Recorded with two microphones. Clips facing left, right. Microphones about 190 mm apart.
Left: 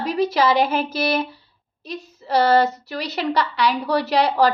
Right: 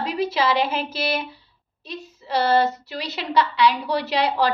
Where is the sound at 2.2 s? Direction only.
40° left (ahead or behind).